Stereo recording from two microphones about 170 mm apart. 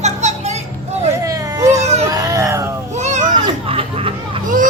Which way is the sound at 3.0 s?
45° right (ahead or behind).